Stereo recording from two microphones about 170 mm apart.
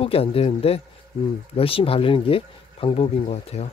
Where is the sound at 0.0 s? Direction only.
35° left (ahead or behind).